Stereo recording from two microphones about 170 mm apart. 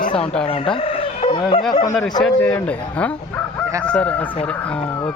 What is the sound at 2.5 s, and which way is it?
Speech, 10° left (ahead or behind).